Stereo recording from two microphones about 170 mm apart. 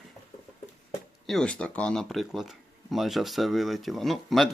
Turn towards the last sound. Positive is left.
turn(degrees=0)  # may be behind; listen again after turning